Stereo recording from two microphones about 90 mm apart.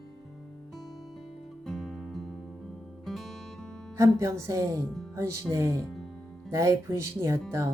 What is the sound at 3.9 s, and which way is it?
Speech, 35° right (ahead or behind).